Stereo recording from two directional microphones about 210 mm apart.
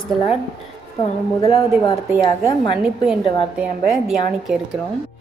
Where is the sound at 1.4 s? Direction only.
15° left (ahead or behind).